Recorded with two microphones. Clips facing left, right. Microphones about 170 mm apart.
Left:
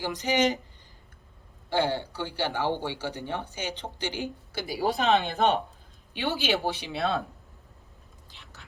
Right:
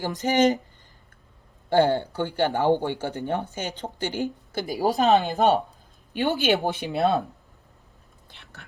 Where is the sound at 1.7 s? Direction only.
50° right (ahead or behind).